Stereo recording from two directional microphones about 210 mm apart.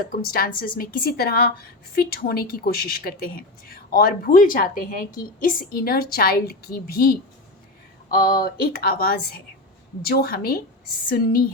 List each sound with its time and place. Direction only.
0.0 s speech: 45° left (ahead or behind)